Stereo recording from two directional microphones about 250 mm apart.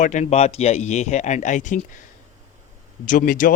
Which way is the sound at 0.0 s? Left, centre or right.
Left.